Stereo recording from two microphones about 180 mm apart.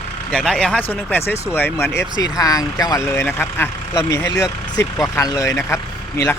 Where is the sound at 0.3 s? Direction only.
5° left (ahead or behind).